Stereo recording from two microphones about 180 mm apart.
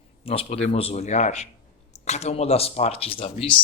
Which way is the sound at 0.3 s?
35° left (ahead or behind).